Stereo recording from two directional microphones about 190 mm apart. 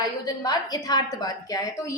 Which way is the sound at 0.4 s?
20° left (ahead or behind).